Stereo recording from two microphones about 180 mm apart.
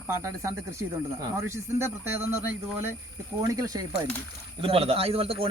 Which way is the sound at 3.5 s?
20° right (ahead or behind).